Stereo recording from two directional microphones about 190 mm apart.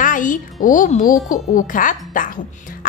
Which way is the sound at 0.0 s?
45° left (ahead or behind).